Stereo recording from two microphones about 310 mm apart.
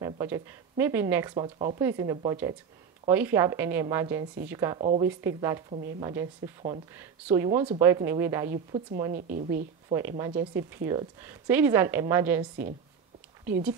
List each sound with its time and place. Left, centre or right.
0.0 s speech: centre
5.7 s speech: right
5.9 s speech: centre
9.1 s speech: right
9.8 s speech: centre